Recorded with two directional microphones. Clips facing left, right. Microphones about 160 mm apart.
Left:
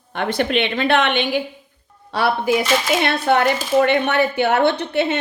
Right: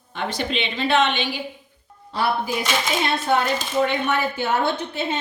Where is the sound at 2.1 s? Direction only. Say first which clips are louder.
Left 5 dB; 75° left (ahead or behind).